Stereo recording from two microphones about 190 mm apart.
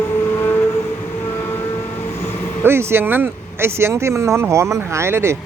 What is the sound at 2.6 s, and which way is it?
Speech, 15° right (ahead or behind).